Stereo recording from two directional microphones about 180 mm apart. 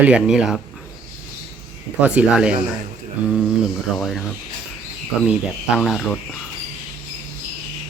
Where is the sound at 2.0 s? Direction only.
5° right (ahead or behind).